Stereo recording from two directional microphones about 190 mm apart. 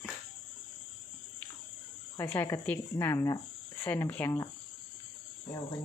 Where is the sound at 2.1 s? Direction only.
10° left (ahead or behind).